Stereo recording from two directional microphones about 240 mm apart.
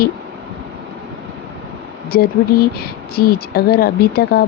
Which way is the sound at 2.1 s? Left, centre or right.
Left.